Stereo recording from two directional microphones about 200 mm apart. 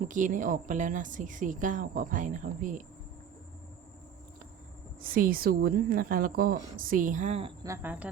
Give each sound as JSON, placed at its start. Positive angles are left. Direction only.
{"t": 0.0, "sound": "speech", "side_deg": -40}
{"t": 4.9, "sound": "a woman's voice", "side_deg": -45}
{"t": 7.6, "sound": "speech", "side_deg": -15}